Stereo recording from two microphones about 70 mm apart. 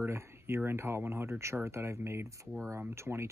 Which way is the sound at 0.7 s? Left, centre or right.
Right.